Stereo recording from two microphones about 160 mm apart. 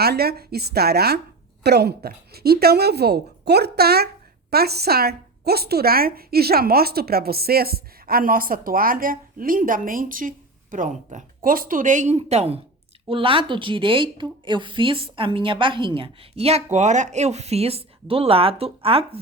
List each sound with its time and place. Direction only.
0.0 s speech: 80° right
1.6 s a woman's voice: 90° right; by 19.2 s 35° right (ahead or behind)